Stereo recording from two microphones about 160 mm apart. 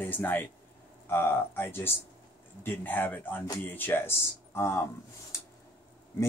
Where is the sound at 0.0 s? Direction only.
10° left (ahead or behind).